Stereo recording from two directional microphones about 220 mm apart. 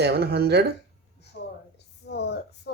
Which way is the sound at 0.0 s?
50° right (ahead or behind).